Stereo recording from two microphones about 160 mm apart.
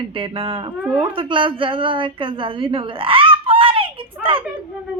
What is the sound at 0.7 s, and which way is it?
Speech, 5° right (ahead or behind).